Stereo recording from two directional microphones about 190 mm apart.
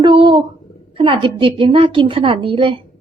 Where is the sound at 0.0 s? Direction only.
25° right (ahead or behind).